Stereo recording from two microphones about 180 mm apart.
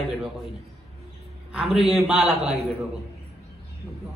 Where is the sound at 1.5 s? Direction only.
Centre (ahead or behind).